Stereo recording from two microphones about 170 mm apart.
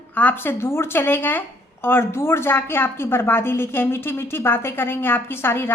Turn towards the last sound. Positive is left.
turn(degrees=15)  # may be behind; listen again after turning